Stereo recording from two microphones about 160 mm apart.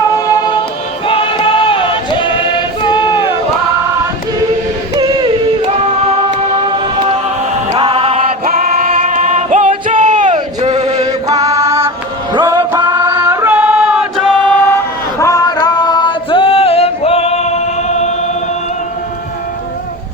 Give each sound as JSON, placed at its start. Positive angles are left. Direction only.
{"t": 0.3, "sound": "music", "side_deg": 25}
{"t": 2.8, "sound": "a sound", "side_deg": 30}
{"t": 4.9, "sound": "music", "side_deg": -25}
{"t": 7.8, "sound": "music", "side_deg": -35}
{"t": 8.4, "sound": "music", "side_deg": -65}
{"t": 9.3, "sound": "music", "side_deg": -50}
{"t": 9.9, "sound": "a sound", "side_deg": -50}
{"t": 10.8, "sound": "chant", "side_deg": -45}
{"t": 11.0, "sound": "music", "side_deg": -20}
{"t": 14.4, "sound": "a sound", "side_deg": 10}
{"t": 15.2, "sound": "male singing", "side_deg": 20}